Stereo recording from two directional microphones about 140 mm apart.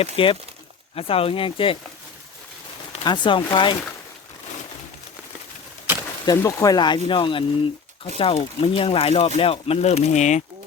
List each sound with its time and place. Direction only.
0.0 s speech: 40° left (ahead or behind)
3.0 s speech: 35° left (ahead or behind)
6.2 s speech: 20° left (ahead or behind); by 10.4 s 55° left (ahead or behind)